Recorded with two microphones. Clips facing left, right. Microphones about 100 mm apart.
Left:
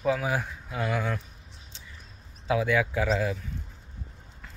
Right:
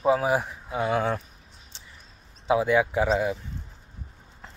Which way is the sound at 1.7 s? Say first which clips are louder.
Even; 30° right (ahead or behind).